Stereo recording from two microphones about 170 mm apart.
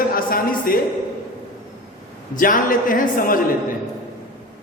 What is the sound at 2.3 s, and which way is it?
A man's voice, 55° left (ahead or behind).